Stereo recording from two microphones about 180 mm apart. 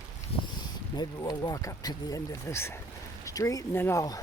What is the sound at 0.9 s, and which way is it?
Speech, 20° left (ahead or behind).